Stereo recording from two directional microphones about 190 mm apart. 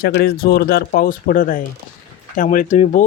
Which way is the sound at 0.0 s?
60° left (ahead or behind).